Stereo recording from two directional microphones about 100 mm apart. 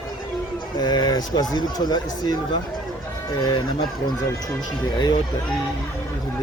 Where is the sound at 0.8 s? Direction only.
45° left (ahead or behind).